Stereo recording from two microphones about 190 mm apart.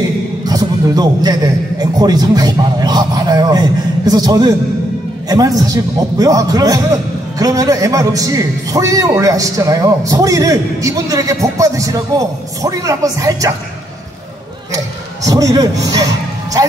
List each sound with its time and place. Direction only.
0.5 s a man's voice: 20° right (ahead or behind)
15.2 s a man's voice: 20° right (ahead or behind)